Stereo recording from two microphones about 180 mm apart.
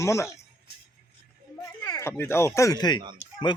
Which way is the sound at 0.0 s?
15° left (ahead or behind).